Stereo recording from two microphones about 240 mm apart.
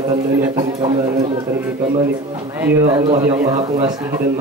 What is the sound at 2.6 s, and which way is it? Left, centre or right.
Speech, centre.